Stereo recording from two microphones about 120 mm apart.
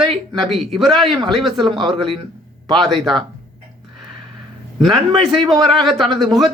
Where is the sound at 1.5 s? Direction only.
40° right (ahead or behind).